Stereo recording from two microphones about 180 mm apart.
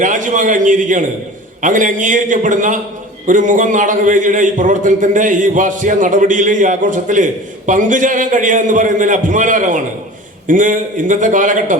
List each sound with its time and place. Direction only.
0.0 s a man's voice: 45° right (ahead or behind)